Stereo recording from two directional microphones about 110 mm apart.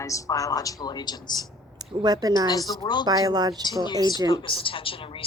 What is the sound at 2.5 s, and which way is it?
Speech, 35° left (ahead or behind).